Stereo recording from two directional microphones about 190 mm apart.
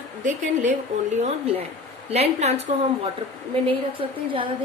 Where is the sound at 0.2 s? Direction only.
40° right (ahead or behind).